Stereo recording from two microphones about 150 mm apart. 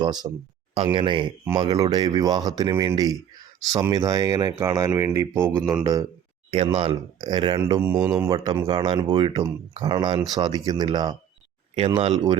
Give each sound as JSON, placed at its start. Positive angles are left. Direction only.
{"t": 0.0, "sound": "speech", "side_deg": -25}
{"t": 7.7, "sound": "speech", "side_deg": -15}